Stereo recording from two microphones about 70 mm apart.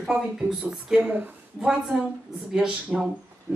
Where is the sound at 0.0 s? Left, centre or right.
Centre.